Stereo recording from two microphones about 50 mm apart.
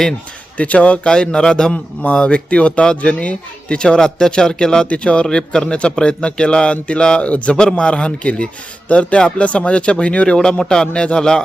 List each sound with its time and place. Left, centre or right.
0.5 s a man's voice: left